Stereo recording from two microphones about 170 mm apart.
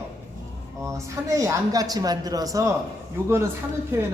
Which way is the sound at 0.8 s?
20° right (ahead or behind).